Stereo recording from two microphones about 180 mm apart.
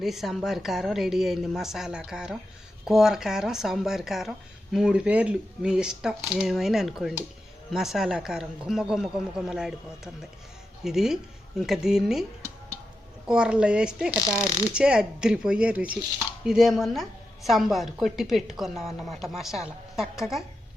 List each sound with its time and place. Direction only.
0.0 s speech: centre (ahead or behind)
13.2 s speech: 5° right (ahead or behind)
14.1 s speech: 20° left (ahead or behind)
14.7 s speech: 5° right (ahead or behind)